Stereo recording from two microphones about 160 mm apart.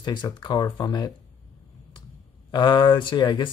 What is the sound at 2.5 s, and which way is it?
Speech, 30° left (ahead or behind).